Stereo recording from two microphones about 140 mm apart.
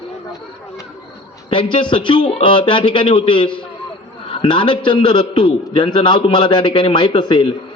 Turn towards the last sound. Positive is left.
turn(degrees=30)  # may be behind; listen again after turning